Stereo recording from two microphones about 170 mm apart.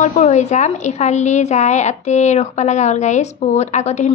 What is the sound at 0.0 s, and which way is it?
A woman's voice, 45° left (ahead or behind).